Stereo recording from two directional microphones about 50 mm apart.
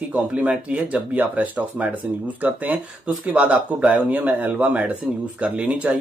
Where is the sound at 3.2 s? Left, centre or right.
Right.